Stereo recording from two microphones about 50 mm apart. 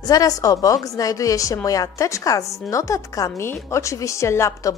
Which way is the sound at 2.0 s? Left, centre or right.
Left.